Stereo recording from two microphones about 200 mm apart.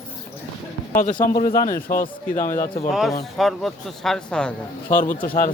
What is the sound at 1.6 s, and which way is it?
A man's voice, 15° left (ahead or behind).